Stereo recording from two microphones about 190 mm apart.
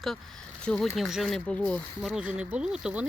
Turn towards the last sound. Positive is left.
turn(degrees=-5)  # may be behind; listen again after turning